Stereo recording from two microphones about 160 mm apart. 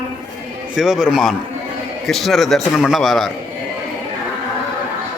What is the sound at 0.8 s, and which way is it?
A man's voice, 5° right (ahead or behind).